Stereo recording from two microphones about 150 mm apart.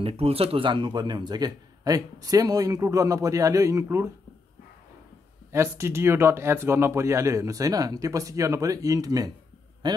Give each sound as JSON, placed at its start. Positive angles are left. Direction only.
{"t": 0.0, "sound": "a man's voice", "side_deg": -40}
{"t": 5.5, "sound": "a man's voice", "side_deg": -20}